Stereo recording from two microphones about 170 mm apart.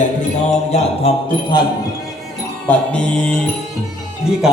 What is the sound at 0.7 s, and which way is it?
Music, 35° left (ahead or behind).